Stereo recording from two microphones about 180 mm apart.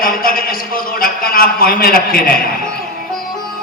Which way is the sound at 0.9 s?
55° left (ahead or behind).